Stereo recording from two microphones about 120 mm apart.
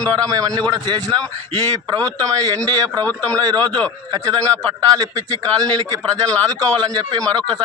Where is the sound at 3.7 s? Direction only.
5° left (ahead or behind).